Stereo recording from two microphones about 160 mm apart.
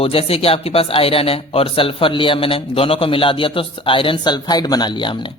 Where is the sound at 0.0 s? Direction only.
35° left (ahead or behind).